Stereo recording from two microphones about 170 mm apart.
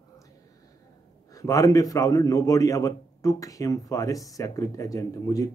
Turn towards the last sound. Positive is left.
turn(degrees=20)  # may be behind; listen again after turning